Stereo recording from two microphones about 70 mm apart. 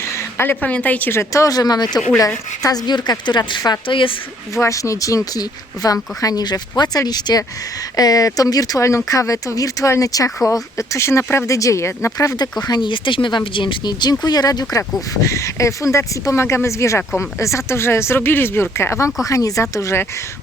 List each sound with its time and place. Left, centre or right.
0.3 s a woman's voice: left
1.1 s speech: left
1.5 s speech: left
2.6 s speech: left
3.6 s speech: left
7.9 s speech: left
8.8 s speech: left
12.4 s speech: left
13.8 s speech: left
15.1 s speech: left
19.2 s speech: left
19.7 s speech: left